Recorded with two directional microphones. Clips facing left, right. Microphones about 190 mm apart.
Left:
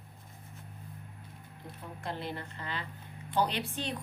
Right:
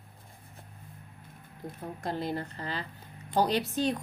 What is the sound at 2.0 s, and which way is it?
A woman's voice, 40° right (ahead or behind).